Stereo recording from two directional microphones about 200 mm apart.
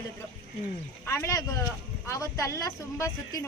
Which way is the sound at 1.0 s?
15° left (ahead or behind).